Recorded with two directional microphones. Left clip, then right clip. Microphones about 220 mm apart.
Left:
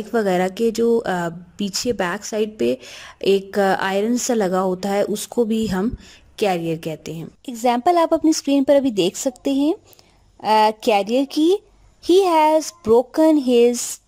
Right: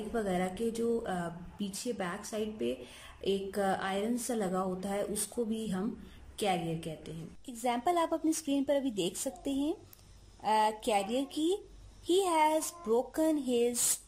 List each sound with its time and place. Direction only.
0.1 s a woman's voice: 45° left (ahead or behind)